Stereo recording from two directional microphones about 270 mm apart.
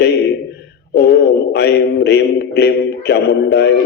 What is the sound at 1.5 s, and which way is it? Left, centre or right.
Mantra, left.